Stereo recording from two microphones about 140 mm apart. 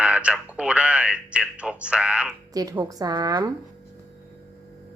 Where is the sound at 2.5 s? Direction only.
25° right (ahead or behind).